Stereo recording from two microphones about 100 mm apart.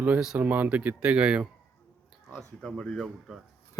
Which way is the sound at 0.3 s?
15° right (ahead or behind).